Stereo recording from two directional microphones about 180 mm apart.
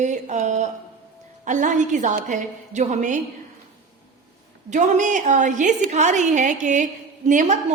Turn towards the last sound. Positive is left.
turn(degrees=-45)  # may be behind; listen again after turning